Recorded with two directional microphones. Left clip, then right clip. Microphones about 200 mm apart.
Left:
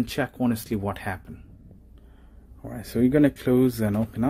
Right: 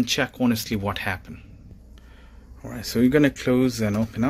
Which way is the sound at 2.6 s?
10° left (ahead or behind).